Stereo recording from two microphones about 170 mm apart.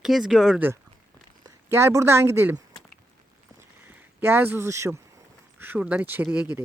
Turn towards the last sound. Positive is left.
turn(degrees=-10)  # may be behind; listen again after turning